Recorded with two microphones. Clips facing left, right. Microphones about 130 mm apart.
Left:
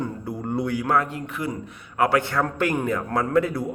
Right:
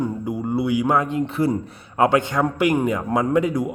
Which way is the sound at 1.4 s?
30° right (ahead or behind).